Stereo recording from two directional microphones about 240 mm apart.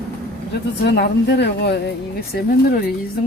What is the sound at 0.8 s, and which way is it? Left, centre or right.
A woman's voice, left.